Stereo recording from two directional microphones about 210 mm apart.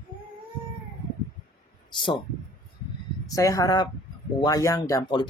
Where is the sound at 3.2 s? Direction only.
15° left (ahead or behind).